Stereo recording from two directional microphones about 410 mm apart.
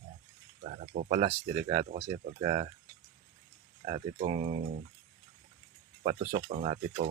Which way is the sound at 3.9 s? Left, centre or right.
Centre.